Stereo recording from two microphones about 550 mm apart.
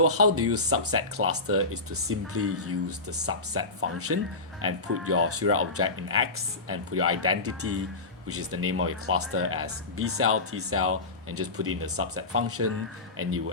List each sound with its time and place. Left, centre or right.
0.0 s speech: right